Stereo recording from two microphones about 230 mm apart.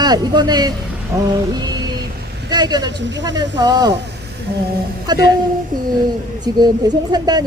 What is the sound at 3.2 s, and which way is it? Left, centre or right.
Speech, centre.